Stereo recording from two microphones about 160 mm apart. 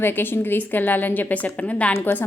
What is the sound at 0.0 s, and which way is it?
A woman's voice, 15° left (ahead or behind).